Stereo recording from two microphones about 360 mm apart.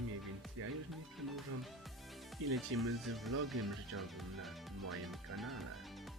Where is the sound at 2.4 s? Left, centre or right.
Right.